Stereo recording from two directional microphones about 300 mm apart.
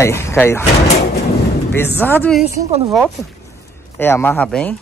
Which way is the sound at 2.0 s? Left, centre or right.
Centre.